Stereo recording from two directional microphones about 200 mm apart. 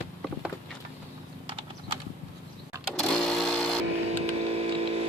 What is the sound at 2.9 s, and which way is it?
Sewing machine, 5° left (ahead or behind).